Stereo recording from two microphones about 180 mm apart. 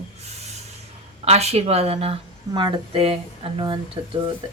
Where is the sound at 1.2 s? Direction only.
35° right (ahead or behind).